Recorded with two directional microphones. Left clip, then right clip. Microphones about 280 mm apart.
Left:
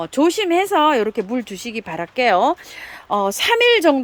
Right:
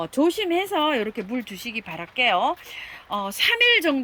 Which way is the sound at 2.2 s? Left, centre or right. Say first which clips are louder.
Left 5 dB; left.